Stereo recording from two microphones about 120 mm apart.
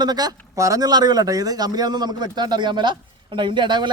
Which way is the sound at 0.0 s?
35° right (ahead or behind).